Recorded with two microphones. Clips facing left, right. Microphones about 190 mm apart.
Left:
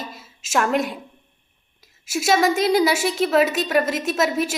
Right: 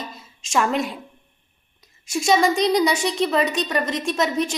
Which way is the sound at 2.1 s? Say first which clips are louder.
Even; 5° left (ahead or behind).